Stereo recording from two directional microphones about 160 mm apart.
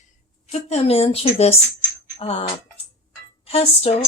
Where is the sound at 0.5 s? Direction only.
40° left (ahead or behind).